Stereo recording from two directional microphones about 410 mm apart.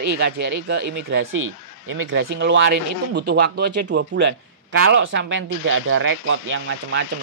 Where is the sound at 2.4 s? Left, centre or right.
Right.